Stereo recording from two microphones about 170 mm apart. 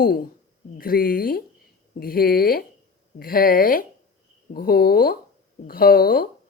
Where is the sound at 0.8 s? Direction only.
60° left (ahead or behind).